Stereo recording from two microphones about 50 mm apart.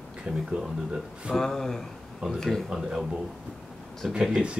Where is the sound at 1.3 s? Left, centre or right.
Centre.